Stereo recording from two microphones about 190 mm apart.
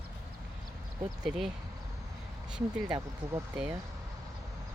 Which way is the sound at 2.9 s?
20° right (ahead or behind).